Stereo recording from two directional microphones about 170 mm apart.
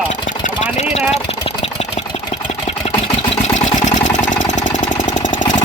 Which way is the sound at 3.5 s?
45° left (ahead or behind).